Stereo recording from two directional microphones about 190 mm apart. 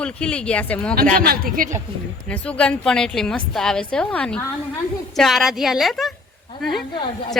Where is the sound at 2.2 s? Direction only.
5° left (ahead or behind).